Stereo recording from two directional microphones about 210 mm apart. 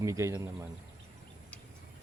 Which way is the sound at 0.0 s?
15° right (ahead or behind).